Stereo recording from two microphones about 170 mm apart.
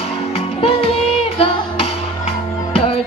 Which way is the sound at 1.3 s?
35° left (ahead or behind).